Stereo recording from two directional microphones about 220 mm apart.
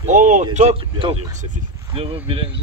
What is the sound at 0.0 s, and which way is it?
A man's voice, 35° right (ahead or behind).